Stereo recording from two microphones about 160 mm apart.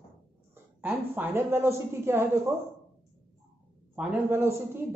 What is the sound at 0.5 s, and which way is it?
A woman's voice, 10° right (ahead or behind).